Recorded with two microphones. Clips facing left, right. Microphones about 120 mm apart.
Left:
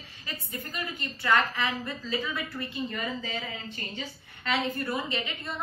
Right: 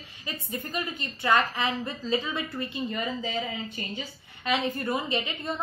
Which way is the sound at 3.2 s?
15° right (ahead or behind).